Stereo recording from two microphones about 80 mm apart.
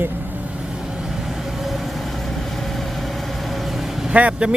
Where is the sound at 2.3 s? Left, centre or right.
Centre.